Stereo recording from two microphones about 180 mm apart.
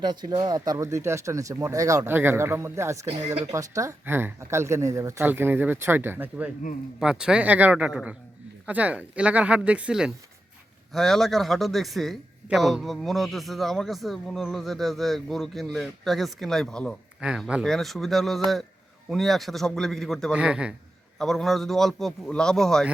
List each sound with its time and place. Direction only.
0.0 s speech: 25° right (ahead or behind)
3.1 s a man's voice: 25° right (ahead or behind); by 22.9 s centre (ahead or behind)